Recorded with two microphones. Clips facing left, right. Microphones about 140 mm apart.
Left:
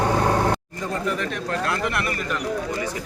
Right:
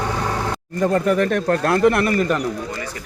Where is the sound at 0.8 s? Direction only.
55° right (ahead or behind).